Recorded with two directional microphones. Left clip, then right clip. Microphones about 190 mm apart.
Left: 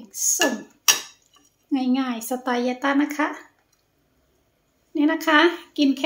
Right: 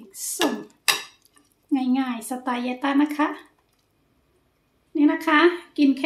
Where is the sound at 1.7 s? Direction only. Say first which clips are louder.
Even; 10° left (ahead or behind).